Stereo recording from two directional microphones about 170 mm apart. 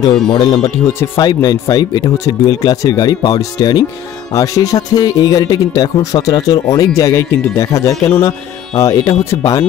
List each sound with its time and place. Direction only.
0.3 s speech: 30° left (ahead or behind)